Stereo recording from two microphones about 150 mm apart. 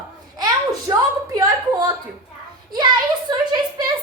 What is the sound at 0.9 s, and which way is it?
Speech, 25° right (ahead or behind).